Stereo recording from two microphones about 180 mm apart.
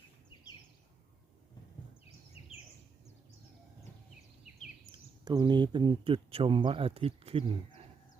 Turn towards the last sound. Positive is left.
turn(degrees=-30)  # may be behind; listen again after turning